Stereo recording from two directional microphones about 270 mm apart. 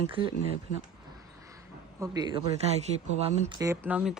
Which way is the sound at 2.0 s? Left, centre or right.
Centre.